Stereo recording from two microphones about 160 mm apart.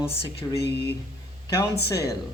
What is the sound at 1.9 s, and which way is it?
Speech, 20° left (ahead or behind).